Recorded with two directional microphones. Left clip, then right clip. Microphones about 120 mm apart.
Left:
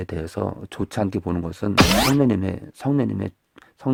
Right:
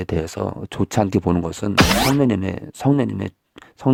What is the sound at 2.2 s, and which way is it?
Speech, 35° right (ahead or behind).